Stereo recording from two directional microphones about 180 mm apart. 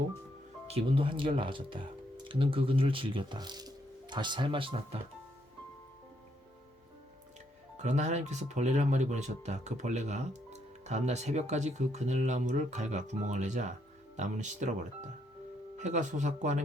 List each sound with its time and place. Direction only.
0.7 s speech: 30° right (ahead or behind)
7.8 s speech: 40° right (ahead or behind)